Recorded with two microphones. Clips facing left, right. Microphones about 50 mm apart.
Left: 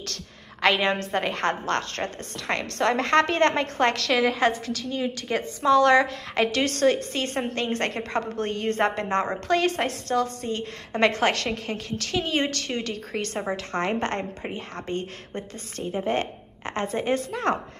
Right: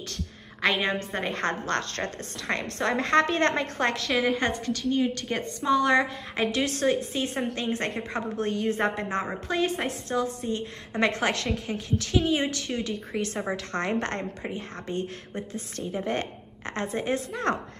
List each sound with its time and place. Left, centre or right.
0.0 s a woman's voice: left
1.3 s speech: left
2.8 s speech: left
3.9 s a woman's voice: left
5.6 s a woman's voice: left
9.5 s a woman's voice: left
11.0 s a woman's voice: left
13.9 s a woman's voice: left
14.5 s speech: left
16.1 s a woman's voice: left